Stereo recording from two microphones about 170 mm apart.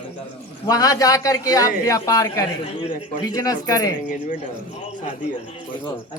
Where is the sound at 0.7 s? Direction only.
20° left (ahead or behind).